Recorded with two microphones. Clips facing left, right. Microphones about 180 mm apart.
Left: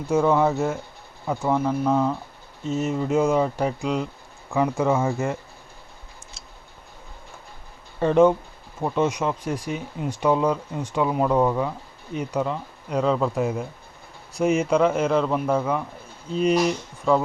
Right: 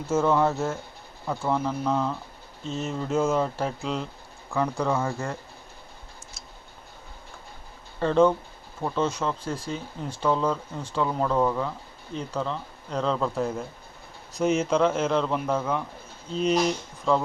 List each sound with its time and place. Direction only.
0.2 s speech: centre (ahead or behind)
7.9 s speech: 15° left (ahead or behind)